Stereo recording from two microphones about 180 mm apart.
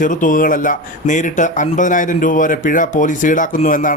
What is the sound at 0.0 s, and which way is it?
A man's voice, 45° left (ahead or behind).